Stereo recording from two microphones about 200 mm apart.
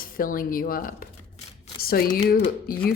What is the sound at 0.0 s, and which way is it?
A woman's voice, 45° left (ahead or behind).